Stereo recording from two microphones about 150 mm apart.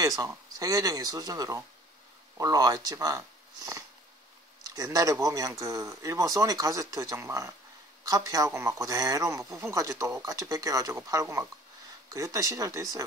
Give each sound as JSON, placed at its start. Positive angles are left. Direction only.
{"t": 0.0, "sound": "speech", "side_deg": -25}